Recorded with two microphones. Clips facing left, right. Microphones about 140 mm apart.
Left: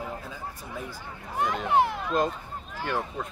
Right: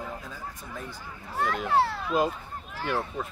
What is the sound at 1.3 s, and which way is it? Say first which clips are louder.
Speech: left 1 dB; 15° left (ahead or behind).